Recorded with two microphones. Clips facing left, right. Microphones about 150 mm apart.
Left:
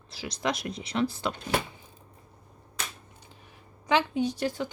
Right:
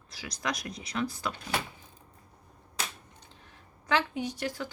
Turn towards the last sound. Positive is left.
turn(degrees=25)  # may be behind; listen again after turning